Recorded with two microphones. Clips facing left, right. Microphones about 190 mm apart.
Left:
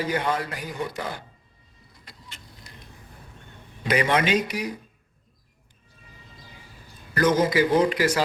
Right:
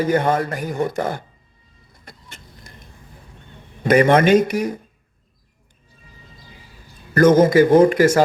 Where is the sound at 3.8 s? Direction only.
50° right (ahead or behind).